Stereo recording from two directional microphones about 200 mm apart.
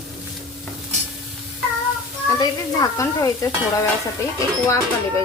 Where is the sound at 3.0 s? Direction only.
15° left (ahead or behind).